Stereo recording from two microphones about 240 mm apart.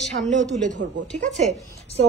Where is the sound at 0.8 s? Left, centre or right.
Right.